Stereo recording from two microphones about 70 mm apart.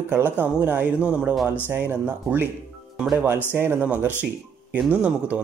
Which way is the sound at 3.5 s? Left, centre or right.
Right.